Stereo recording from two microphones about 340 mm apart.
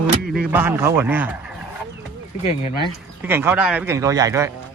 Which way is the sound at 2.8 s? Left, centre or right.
Centre.